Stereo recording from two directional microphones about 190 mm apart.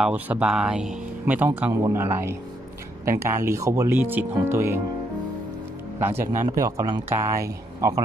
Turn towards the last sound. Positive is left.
turn(degrees=-15)  # may be behind; listen again after turning